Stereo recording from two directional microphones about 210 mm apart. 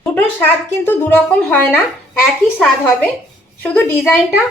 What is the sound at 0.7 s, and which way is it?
A woman's voice, 10° left (ahead or behind).